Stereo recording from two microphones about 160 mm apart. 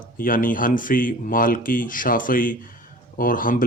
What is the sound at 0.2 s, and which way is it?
Speech, 60° left (ahead or behind).